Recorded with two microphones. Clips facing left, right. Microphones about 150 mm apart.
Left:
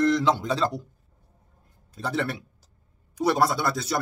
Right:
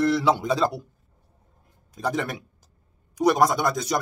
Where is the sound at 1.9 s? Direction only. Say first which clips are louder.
Right 1 dB; 15° right (ahead or behind).